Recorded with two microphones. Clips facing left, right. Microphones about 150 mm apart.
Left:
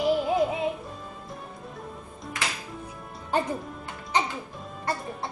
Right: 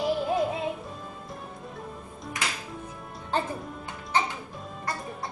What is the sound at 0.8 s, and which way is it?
Music, centre (ahead or behind).